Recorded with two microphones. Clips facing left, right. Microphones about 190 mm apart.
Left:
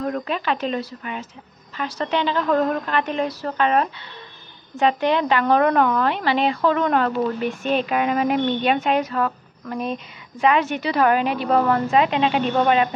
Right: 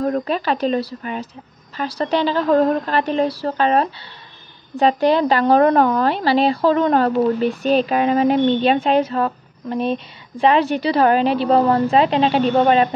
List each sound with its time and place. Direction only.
0.0 s speech: 35° right (ahead or behind)